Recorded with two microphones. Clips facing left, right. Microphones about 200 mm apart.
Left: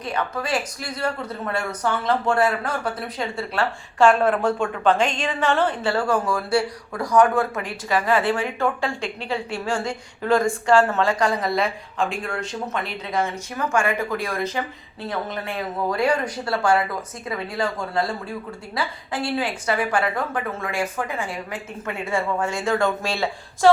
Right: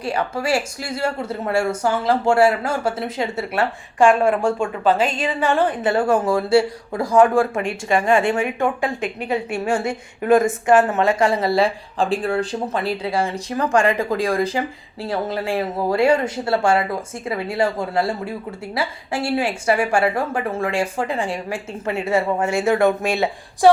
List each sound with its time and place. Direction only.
0.0 s speech: 30° right (ahead or behind)